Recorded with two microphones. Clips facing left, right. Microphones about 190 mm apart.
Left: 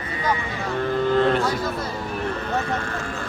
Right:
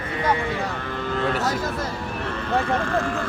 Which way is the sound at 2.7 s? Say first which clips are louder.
Right 5 dB; 55° right (ahead or behind).